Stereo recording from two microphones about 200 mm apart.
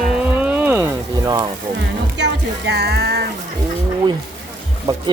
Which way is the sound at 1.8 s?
60° right (ahead or behind).